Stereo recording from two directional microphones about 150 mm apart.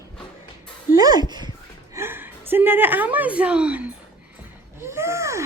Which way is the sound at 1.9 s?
15° right (ahead or behind).